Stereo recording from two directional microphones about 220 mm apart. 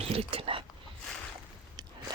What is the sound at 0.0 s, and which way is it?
Speech, 25° right (ahead or behind).